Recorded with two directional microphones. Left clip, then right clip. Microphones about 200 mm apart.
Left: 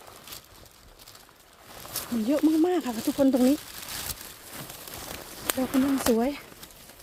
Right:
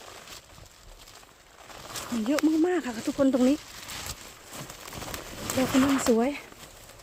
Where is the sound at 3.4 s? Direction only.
45° left (ahead or behind).